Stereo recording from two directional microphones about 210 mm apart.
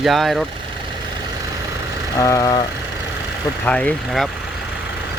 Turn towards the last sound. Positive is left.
turn(degrees=5)  # may be behind; listen again after turning